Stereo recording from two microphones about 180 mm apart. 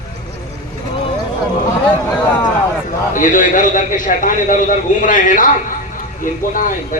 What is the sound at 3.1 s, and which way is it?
Speech, 50° left (ahead or behind).